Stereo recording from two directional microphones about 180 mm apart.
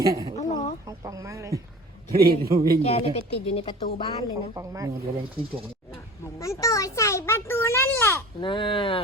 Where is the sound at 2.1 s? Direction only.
60° right (ahead or behind).